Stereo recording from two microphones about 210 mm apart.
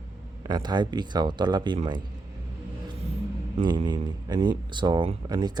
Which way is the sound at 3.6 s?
20° right (ahead or behind).